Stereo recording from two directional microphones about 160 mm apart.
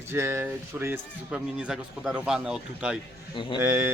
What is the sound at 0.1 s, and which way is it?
A man's voice, 15° right (ahead or behind).